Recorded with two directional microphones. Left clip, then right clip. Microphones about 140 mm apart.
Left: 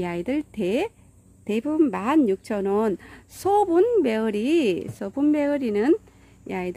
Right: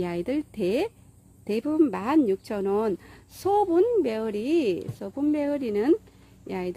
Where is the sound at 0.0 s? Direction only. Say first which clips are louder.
Left 1 dB; 20° left (ahead or behind).